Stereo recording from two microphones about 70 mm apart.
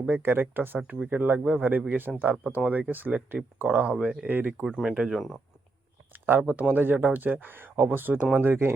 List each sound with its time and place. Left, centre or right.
0.1 s speech: right
0.9 s speech: centre
4.6 s speech: centre
6.1 s speech: right